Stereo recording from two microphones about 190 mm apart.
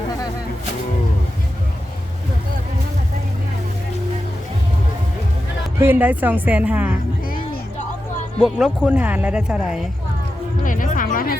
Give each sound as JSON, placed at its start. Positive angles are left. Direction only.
{"t": 5.8, "sound": "a woman's voice", "side_deg": -10}
{"t": 8.4, "sound": "speech", "side_deg": 0}
{"t": 10.6, "sound": "speech", "side_deg": 45}